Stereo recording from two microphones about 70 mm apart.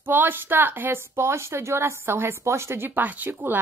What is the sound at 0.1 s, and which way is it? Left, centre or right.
A woman's voice, right.